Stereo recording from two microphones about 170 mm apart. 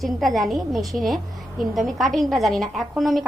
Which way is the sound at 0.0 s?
Centre (ahead or behind).